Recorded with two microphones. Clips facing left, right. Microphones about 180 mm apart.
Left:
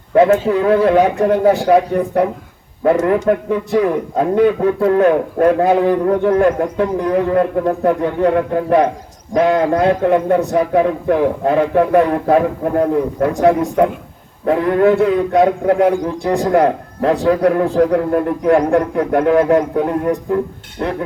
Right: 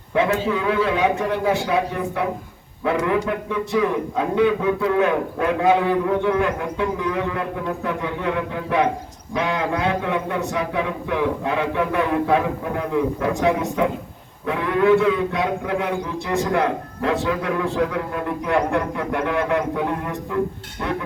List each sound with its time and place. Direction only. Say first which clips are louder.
0.1 s a man's voice: left 9 dB; 45° left (ahead or behind)